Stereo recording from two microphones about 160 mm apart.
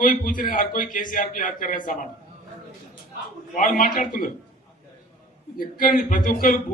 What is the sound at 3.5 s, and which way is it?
Speech, 60° left (ahead or behind).